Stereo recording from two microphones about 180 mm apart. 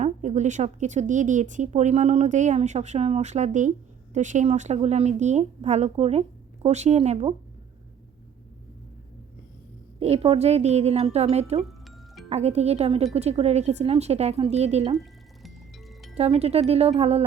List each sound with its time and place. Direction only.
0.0 s speech: 40° right (ahead or behind)
10.0 s speech: 35° right (ahead or behind)
16.1 s speech: 35° right (ahead or behind)